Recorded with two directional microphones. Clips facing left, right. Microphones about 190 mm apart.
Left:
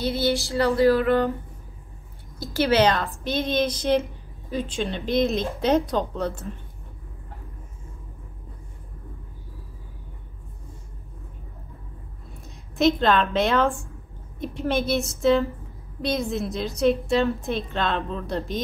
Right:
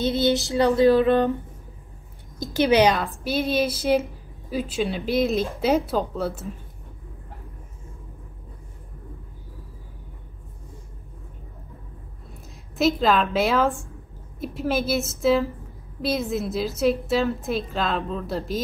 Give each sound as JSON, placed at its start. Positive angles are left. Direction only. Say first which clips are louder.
{"t": 0.0, "sound": "female singing", "louder": "right 2 dB", "side_deg": -20}
{"t": 2.3, "sound": "a woman's voice", "louder": "right 2 dB", "side_deg": -20}
{"t": 12.4, "sound": "a woman's voice", "louder": "left 1 dB", "side_deg": 0}